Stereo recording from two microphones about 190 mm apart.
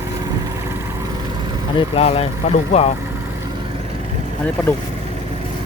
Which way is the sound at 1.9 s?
30° left (ahead or behind).